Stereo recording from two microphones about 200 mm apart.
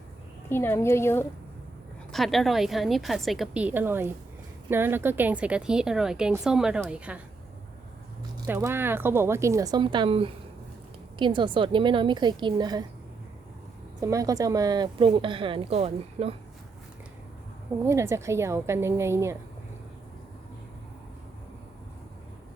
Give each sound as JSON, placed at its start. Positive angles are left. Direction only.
{"t": 0.5, "sound": "a woman's voice", "side_deg": 10}
{"t": 2.1, "sound": "a woman's voice", "side_deg": 0}
{"t": 8.4, "sound": "a woman's voice", "side_deg": -10}
{"t": 14.0, "sound": "a woman's voice", "side_deg": -15}
{"t": 17.8, "sound": "speech", "side_deg": -15}